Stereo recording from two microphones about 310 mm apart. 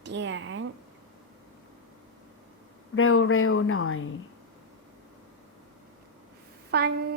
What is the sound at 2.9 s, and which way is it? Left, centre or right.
Speech, left.